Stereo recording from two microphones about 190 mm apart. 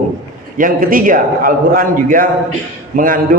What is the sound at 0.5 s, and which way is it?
A man's voice, 45° right (ahead or behind).